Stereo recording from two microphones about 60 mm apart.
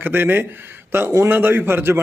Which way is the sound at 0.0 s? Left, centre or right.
Right.